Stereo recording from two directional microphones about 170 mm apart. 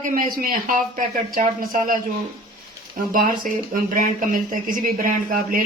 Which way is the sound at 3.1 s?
55° right (ahead or behind).